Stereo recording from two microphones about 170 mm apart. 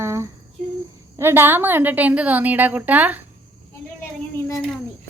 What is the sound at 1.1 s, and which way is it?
A woman's voice, 15° right (ahead or behind).